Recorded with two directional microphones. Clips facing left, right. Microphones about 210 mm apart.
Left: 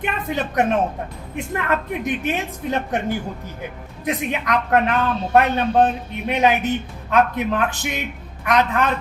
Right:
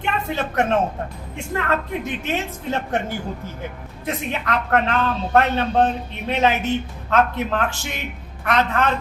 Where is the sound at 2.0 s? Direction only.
15° left (ahead or behind).